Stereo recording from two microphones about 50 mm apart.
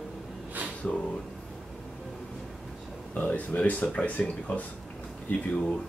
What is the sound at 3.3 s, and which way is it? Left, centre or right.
Speech, left.